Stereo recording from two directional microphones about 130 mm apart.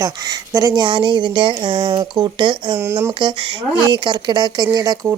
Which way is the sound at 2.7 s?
20° right (ahead or behind).